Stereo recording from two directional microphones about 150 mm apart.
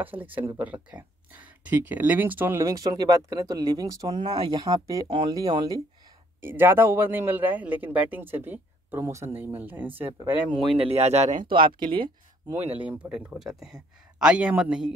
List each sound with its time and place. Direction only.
0.0 s speech: 10° right (ahead or behind)
6.4 s speech: 15° right (ahead or behind)
10.8 s speech: 45° right (ahead or behind)
11.5 s speech: 35° right (ahead or behind)
12.8 s speech: 10° right (ahead or behind)